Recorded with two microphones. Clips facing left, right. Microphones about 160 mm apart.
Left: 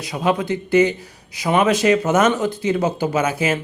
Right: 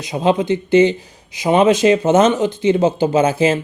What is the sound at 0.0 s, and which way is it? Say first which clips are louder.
Speech: right 4 dB; 25° right (ahead or behind).